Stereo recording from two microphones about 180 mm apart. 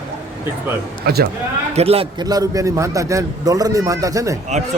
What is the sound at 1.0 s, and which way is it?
Speech, 60° right (ahead or behind).